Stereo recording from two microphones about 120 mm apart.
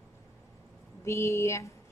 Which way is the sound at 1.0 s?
25° left (ahead or behind).